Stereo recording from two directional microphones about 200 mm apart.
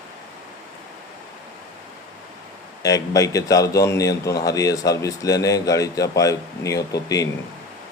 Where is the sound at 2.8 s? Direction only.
15° left (ahead or behind).